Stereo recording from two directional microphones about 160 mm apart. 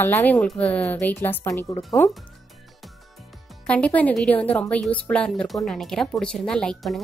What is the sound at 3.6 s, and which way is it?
A woman's voice, 5° left (ahead or behind).